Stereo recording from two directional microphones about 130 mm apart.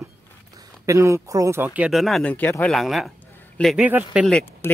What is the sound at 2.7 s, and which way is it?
Speech, centre (ahead or behind).